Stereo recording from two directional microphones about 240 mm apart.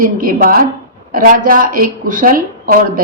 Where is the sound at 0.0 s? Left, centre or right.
Right.